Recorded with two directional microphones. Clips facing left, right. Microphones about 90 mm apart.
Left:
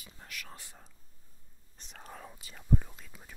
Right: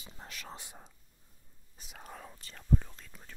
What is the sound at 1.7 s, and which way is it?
Speech, 5° right (ahead or behind).